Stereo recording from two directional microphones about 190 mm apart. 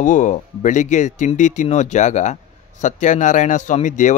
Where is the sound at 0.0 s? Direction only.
40° left (ahead or behind).